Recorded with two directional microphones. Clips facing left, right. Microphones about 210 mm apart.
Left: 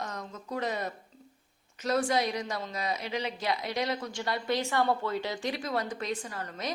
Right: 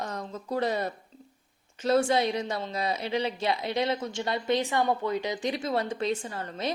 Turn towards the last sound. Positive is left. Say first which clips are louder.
# right 4 dB
turn(degrees=-25)  # may be behind; listen again after turning